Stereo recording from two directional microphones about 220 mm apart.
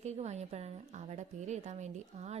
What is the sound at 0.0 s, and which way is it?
Speech, 30° right (ahead or behind).